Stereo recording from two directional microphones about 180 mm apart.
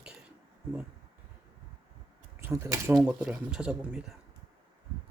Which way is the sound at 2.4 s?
15° right (ahead or behind).